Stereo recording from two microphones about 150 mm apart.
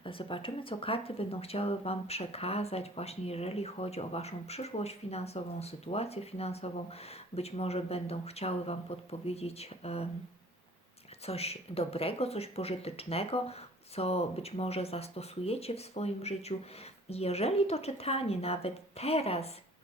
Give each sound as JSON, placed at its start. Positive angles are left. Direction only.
{"t": 0.0, "sound": "speech", "side_deg": 35}
{"t": 11.3, "sound": "speech", "side_deg": 40}